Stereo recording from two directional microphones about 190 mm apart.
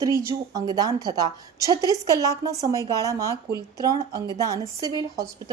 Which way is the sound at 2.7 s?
15° left (ahead or behind).